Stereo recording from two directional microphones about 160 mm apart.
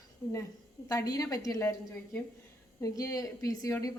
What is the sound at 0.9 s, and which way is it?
Speech, 20° left (ahead or behind).